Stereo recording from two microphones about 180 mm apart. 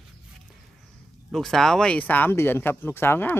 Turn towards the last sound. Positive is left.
turn(degrees=10)  # may be behind; listen again after turning